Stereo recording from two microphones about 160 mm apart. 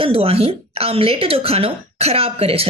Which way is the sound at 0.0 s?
35° right (ahead or behind).